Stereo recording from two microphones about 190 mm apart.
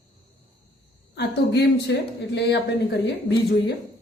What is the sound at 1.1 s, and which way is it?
Speech, 65° left (ahead or behind).